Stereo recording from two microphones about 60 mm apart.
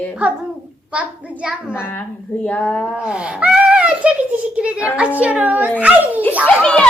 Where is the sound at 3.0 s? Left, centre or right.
Centre.